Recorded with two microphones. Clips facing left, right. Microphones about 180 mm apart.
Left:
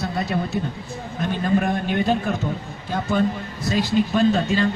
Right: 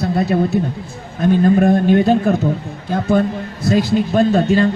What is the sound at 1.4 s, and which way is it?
Speech, 50° right (ahead or behind).